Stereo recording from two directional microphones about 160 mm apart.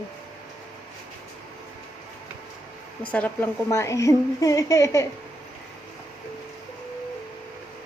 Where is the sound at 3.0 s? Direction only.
10° left (ahead or behind).